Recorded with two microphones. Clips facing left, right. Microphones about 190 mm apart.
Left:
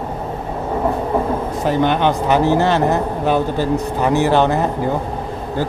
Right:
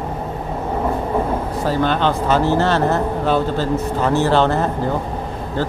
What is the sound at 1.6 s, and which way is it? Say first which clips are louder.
Speech: left 2 dB; 20° left (ahead or behind).